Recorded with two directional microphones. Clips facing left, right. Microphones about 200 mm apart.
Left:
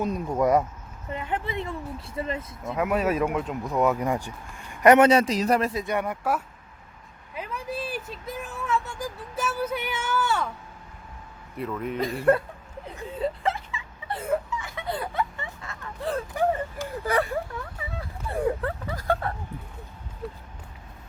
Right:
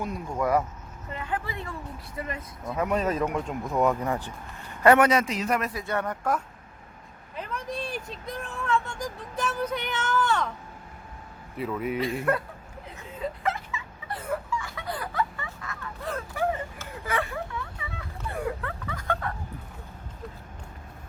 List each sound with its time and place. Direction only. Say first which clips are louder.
0.0 s speech: left 5 dB; 20° left (ahead or behind)
2.7 s speech: left 2 dB; 5° left (ahead or behind)
4.0 s speech: left 2 dB; 10° left (ahead or behind); by 5.8 s 30° left (ahead or behind)
5.8 s speech: left 2 dB; 15° left (ahead or behind)
11.5 s speech: right 1 dB; 5° right (ahead or behind)
11.9 s speech: left 6 dB; 40° left (ahead or behind)
13.1 s a sound: left 3 dB; 30° left (ahead or behind)
16.3 s speech: left 2 dB; 15° left (ahead or behind)
17.1 s a sound: left 4 dB; 40° left (ahead or behind)